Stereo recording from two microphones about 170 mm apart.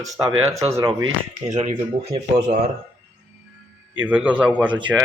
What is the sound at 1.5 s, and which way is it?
Speech, 45° right (ahead or behind).